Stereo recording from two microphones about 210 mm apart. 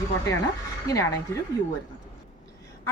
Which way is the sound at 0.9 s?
15° left (ahead or behind).